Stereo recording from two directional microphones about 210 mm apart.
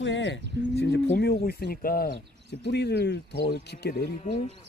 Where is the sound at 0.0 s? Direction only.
60° left (ahead or behind).